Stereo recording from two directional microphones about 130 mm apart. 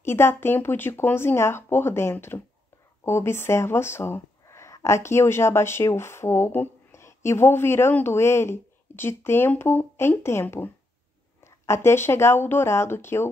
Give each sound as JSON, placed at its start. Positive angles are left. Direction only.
{"t": 0.0, "sound": "speech", "side_deg": 20}